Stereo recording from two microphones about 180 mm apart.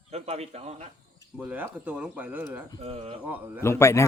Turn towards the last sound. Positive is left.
turn(degrees=15)  # may be behind; listen again after turning